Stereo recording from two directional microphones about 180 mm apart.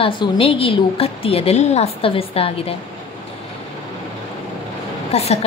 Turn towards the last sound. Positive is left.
turn(degrees=35)  # may be behind; listen again after turning